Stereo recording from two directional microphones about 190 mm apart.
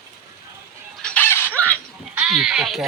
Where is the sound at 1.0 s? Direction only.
5° left (ahead or behind).